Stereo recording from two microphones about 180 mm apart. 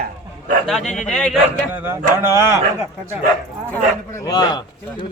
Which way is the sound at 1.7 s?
15° right (ahead or behind).